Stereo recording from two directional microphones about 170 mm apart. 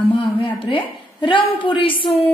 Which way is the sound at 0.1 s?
30° left (ahead or behind).